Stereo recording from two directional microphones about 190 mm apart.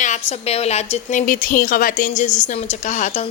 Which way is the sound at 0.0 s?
35° left (ahead or behind).